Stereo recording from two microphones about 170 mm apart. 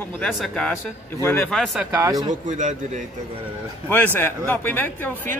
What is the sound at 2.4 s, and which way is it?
Speech, 45° right (ahead or behind).